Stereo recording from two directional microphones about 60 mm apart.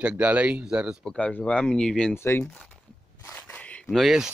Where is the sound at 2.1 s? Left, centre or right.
Left.